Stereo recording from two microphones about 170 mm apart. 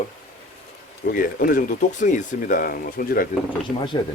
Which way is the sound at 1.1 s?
55° left (ahead or behind).